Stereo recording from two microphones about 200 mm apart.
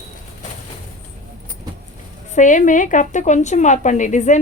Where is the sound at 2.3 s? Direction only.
40° left (ahead or behind).